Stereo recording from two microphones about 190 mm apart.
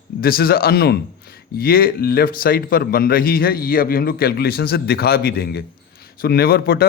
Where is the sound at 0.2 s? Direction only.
50° left (ahead or behind).